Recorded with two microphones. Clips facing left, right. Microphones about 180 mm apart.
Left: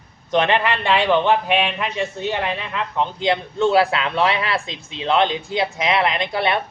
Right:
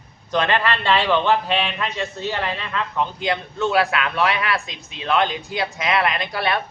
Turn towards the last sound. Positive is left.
turn(degrees=20)  # may be behind; listen again after turning